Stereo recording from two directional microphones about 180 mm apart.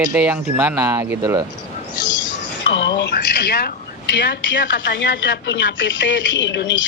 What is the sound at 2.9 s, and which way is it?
Speech, 70° left (ahead or behind).